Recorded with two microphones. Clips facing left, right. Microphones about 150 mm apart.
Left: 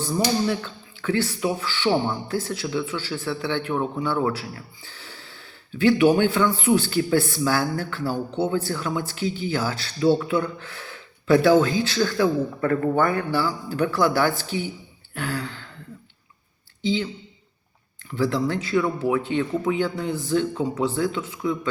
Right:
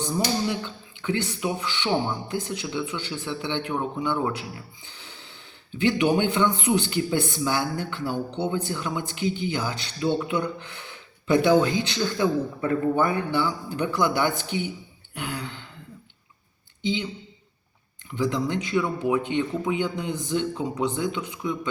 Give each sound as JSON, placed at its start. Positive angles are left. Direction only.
{"t": 0.4, "sound": "speech", "side_deg": -20}
{"t": 15.1, "sound": "a sound", "side_deg": -20}
{"t": 16.8, "sound": "speech", "side_deg": -15}
{"t": 18.1, "sound": "speech", "side_deg": -15}